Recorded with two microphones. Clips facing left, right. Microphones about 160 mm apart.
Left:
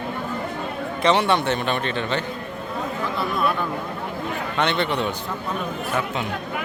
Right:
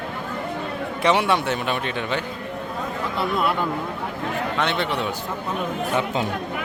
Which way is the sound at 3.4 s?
20° right (ahead or behind).